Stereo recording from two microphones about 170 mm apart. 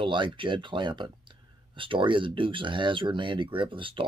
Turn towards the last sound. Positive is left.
turn(degrees=-30)  # may be behind; listen again after turning